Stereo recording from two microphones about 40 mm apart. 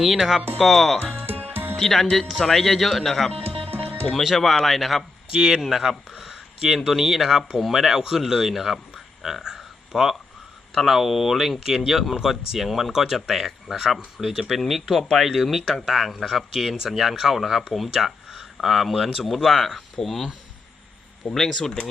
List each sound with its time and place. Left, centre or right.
0.0 s speech: centre
1.8 s speech: centre
4.1 s speech: centre
5.3 s speech: centre
5.9 s a sound: centre
6.2 s speech: centre
21.3 s speech: centre